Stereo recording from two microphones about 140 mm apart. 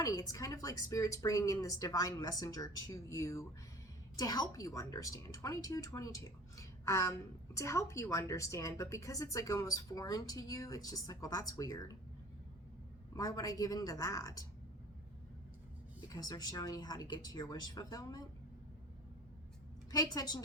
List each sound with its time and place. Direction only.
0.0 s speech: 25° left (ahead or behind)
13.1 s speech: 25° left (ahead or behind)
16.0 s speech: 25° left (ahead or behind)
19.9 s speech: 25° left (ahead or behind)